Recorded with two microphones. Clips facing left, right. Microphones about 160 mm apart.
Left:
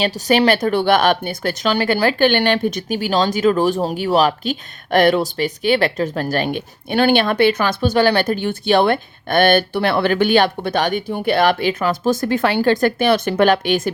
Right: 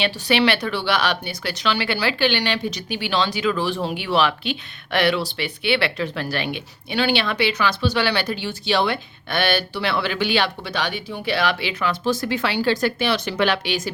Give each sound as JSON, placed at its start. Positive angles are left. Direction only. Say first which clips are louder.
{"t": 0.0, "sound": "speech", "louder": "left 4 dB", "side_deg": 40}